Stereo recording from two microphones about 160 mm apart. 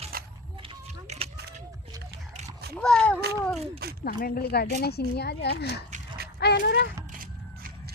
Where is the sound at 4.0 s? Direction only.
65° left (ahead or behind); by 6.9 s 90° left.